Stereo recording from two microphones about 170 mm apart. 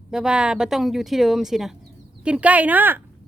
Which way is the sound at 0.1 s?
5° right (ahead or behind).